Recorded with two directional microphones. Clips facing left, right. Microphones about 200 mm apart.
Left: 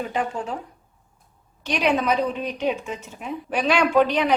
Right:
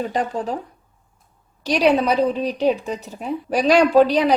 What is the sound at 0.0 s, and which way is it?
Speech, 35° right (ahead or behind).